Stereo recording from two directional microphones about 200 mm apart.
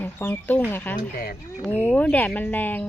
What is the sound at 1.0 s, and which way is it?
Speech, 45° left (ahead or behind).